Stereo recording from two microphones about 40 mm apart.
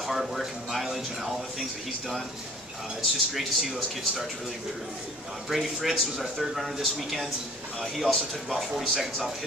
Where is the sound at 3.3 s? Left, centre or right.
Centre.